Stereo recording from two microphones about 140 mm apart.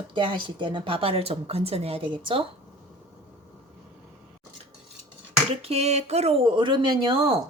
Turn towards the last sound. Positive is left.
turn(degrees=-40)  # may be behind; listen again after turning